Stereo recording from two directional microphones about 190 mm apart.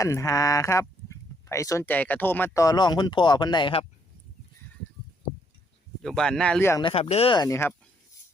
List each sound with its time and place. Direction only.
0.0 s speech: 15° left (ahead or behind)
6.0 s speech: 5° left (ahead or behind)
6.8 s speech: 30° left (ahead or behind); by 7.7 s 15° left (ahead or behind)